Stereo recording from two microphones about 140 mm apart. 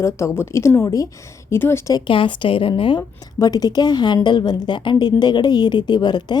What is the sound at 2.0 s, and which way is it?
Speech, 35° left (ahead or behind).